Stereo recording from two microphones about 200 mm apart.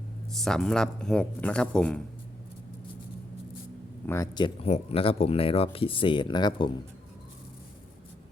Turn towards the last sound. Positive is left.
turn(degrees=20)  # may be behind; listen again after turning